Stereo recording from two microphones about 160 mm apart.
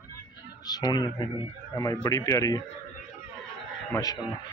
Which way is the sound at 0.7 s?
25° left (ahead or behind).